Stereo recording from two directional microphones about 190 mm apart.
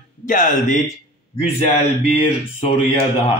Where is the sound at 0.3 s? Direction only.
45° left (ahead or behind).